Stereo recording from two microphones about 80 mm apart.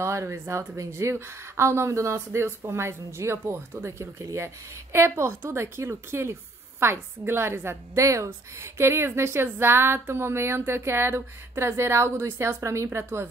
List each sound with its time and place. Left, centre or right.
0.0 s a woman's voice: right
4.9 s a woman's voice: right